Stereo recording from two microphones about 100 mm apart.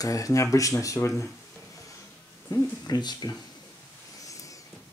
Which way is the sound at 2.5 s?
30° left (ahead or behind).